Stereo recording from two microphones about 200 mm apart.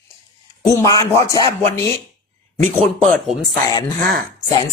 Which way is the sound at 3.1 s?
Centre (ahead or behind).